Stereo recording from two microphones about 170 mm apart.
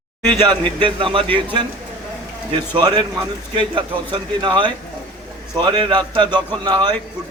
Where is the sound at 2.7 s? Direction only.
30° right (ahead or behind).